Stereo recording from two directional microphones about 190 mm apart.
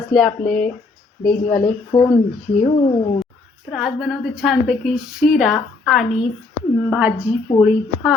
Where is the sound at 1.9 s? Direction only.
30° left (ahead or behind).